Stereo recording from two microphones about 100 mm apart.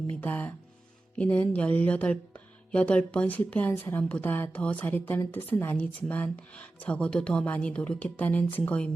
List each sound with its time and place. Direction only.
0.1 s a woman's voice: 15° left (ahead or behind)